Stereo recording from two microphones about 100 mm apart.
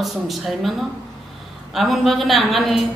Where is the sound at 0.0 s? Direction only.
Centre (ahead or behind).